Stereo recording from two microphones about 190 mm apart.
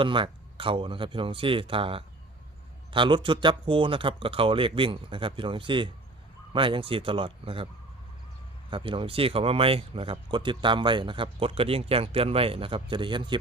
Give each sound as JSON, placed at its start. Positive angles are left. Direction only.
{"t": 0.0, "sound": "speech", "side_deg": -25}
{"t": 8.7, "sound": "speech", "side_deg": -25}